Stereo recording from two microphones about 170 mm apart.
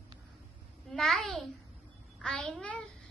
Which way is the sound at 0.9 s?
Centre (ahead or behind).